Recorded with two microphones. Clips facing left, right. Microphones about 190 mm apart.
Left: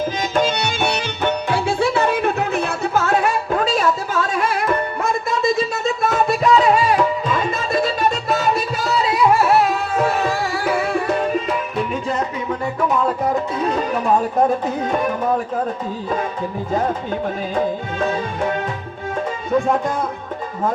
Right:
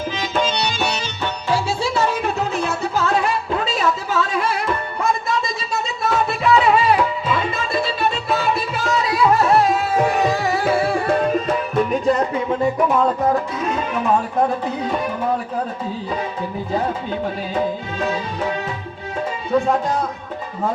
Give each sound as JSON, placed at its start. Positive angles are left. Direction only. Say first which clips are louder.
{"t": 0.2, "sound": "music", "louder": "even", "side_deg": 50}
{"t": 5.0, "sound": "a sound", "louder": "left 1 dB", "side_deg": 55}
{"t": 9.3, "sound": "music", "louder": "right 1 dB", "side_deg": 5}
{"t": 10.0, "sound": "music", "louder": "left 1 dB", "side_deg": -15}